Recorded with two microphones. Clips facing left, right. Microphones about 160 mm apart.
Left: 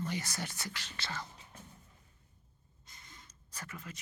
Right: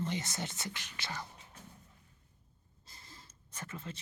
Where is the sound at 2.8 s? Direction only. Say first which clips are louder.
Right 1 dB; 30° right (ahead or behind).